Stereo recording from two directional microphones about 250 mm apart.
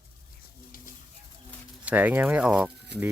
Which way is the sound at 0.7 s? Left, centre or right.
Left.